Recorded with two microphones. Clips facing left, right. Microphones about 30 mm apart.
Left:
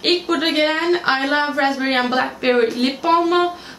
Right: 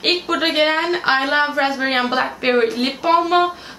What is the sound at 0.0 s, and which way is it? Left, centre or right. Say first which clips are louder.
Speech: even; centre.